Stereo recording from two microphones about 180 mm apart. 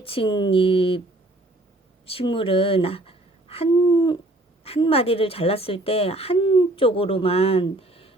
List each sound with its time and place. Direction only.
0.0 s speech: 30° left (ahead or behind)
2.0 s speech: 30° left (ahead or behind)